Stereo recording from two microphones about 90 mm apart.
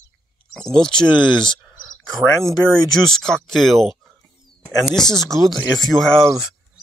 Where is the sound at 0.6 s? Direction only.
5° left (ahead or behind).